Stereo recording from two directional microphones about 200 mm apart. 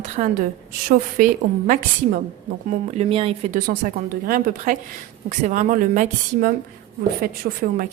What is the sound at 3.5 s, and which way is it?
Speech, 40° right (ahead or behind).